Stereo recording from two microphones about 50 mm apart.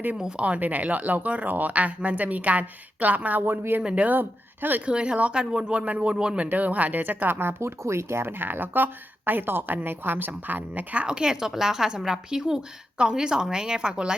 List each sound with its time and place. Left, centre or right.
0.2 s a woman's voice: centre
0.4 s speech: right
4.2 s speech: right
4.9 s speech: right
6.4 s speech: right
7.8 s speech: right
11.0 s a woman's voice: centre